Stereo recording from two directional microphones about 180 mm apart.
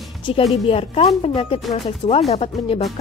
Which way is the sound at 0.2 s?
30° left (ahead or behind).